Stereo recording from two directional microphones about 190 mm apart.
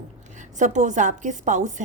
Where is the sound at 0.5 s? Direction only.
40° right (ahead or behind).